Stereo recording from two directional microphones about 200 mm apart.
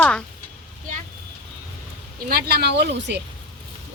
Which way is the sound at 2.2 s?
50° right (ahead or behind).